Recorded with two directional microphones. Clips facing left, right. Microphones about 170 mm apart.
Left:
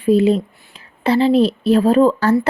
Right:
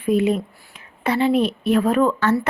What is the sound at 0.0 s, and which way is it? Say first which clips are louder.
Speech: left 5 dB; 30° left (ahead or behind).